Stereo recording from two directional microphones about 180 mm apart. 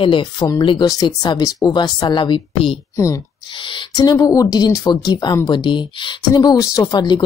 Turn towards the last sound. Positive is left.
turn(degrees=25)  # may be behind; listen again after turning